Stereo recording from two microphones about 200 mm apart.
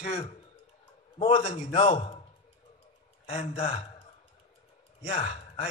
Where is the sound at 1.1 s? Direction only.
30° left (ahead or behind).